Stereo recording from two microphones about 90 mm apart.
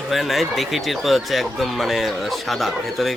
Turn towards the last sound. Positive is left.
turn(degrees=0)  # may be behind; listen again after turning